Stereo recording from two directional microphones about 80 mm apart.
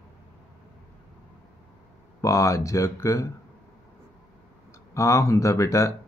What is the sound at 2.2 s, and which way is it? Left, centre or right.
Speech, left.